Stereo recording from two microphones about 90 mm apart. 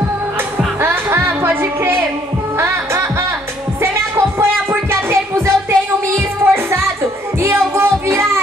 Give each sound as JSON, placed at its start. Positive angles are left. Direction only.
{"t": 0.7, "sound": "music", "side_deg": -25}